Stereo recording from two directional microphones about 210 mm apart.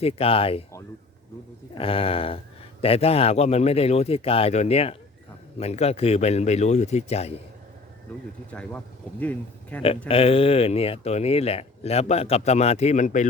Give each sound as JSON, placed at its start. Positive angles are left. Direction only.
{"t": 0.0, "sound": "speech", "side_deg": 25}
{"t": 1.8, "sound": "speech", "side_deg": 25}
{"t": 8.1, "sound": "speech", "side_deg": 5}
{"t": 10.1, "sound": "speech", "side_deg": 25}